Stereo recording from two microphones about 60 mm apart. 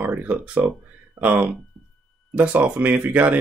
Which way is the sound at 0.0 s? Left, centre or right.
Right.